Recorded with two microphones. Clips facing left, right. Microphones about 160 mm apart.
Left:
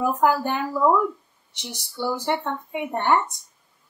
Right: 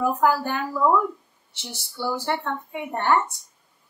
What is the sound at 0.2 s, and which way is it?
A woman's voice, 20° left (ahead or behind).